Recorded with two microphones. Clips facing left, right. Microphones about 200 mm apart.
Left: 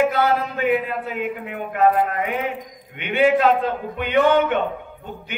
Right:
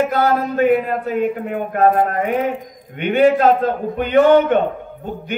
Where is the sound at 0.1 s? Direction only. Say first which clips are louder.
Right 3 dB; 45° right (ahead or behind).